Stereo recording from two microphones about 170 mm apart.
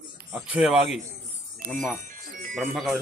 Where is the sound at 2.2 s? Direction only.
55° right (ahead or behind).